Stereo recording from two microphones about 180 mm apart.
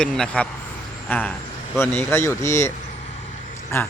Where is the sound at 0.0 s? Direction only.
5° left (ahead or behind).